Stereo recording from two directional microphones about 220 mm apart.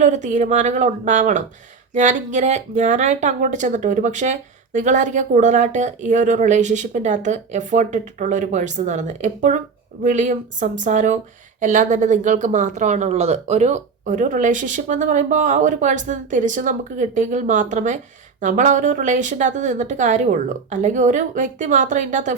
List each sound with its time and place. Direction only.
0.0 s speech: 35° right (ahead or behind)